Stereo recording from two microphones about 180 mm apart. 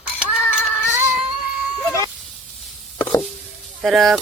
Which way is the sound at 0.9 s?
10° right (ahead or behind).